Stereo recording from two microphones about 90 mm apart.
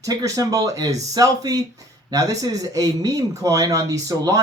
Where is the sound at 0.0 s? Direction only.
40° right (ahead or behind).